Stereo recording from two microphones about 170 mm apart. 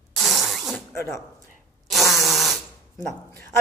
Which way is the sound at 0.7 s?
15° left (ahead or behind).